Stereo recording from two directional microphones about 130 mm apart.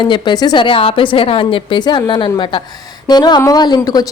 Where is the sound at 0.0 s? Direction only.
35° left (ahead or behind).